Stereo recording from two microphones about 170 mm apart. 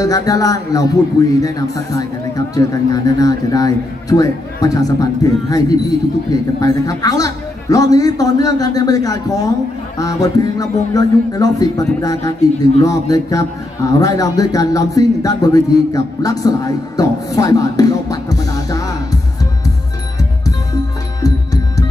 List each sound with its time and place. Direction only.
0.0 s a man's voice: 20° left (ahead or behind)